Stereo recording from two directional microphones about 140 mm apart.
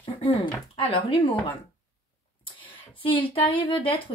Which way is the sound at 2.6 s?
35° left (ahead or behind).